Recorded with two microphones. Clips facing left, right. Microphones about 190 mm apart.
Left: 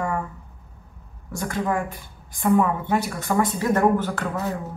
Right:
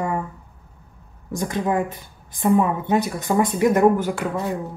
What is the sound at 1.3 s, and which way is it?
A woman's voice, 20° right (ahead or behind).